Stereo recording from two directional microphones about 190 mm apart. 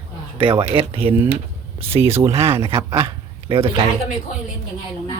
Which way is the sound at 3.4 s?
30° right (ahead or behind).